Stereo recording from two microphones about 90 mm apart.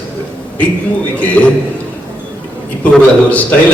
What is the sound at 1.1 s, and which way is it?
Speech, 15° left (ahead or behind).